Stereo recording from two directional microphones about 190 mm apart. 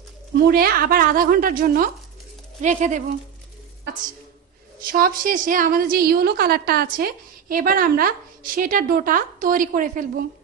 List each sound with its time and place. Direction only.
0.4 s a woman's voice: 50° right (ahead or behind)
4.8 s a woman's voice: 50° right (ahead or behind)